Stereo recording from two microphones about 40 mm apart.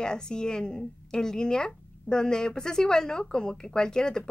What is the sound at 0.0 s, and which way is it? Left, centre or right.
A woman's voice, centre.